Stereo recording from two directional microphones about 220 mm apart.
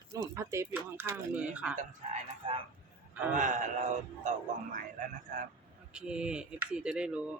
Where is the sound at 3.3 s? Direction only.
35° right (ahead or behind).